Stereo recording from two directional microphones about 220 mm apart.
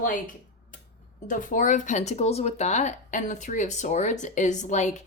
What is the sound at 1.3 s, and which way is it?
Speech, 35° left (ahead or behind).